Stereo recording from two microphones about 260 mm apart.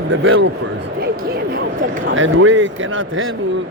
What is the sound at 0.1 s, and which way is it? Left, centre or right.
Speech, right.